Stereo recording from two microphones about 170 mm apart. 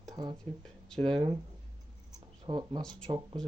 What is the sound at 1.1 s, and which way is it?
Speech, 30° right (ahead or behind).